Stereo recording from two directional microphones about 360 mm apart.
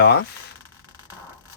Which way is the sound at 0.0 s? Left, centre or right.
Left.